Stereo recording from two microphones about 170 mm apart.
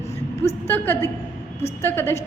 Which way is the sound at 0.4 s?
10° left (ahead or behind).